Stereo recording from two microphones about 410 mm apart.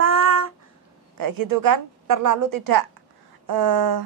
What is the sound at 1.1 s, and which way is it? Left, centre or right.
A woman's voice, right.